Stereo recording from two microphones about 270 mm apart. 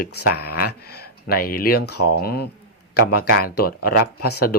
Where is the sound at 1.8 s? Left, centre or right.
Left.